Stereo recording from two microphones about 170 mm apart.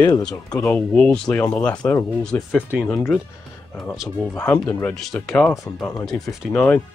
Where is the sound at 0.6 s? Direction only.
10° left (ahead or behind).